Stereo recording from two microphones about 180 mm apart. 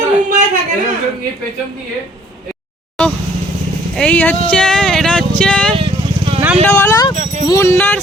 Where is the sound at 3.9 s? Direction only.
5° left (ahead or behind).